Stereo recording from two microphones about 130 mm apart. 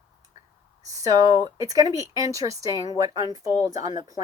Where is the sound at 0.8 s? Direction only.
25° right (ahead or behind).